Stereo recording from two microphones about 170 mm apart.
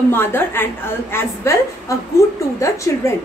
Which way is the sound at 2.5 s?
15° left (ahead or behind).